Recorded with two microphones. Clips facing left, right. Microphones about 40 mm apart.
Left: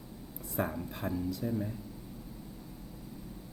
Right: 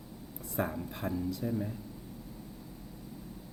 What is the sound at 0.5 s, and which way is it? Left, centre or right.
Speech, centre.